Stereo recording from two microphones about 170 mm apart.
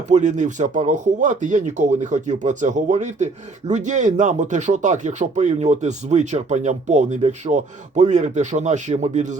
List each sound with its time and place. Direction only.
0.1 s speech: 45° right (ahead or behind)